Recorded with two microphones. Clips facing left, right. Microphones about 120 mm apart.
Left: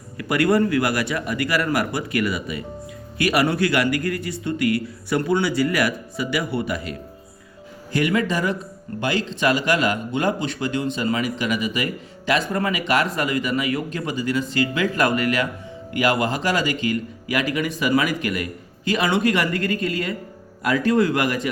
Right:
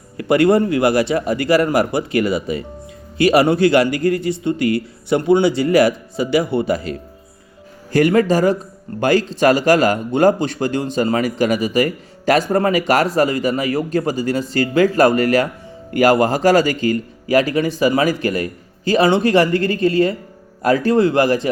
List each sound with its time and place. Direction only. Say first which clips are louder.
0.2 s speech: right 5 dB; 25° right (ahead or behind)
7.9 s a man's voice: right 7 dB; 40° right (ahead or behind)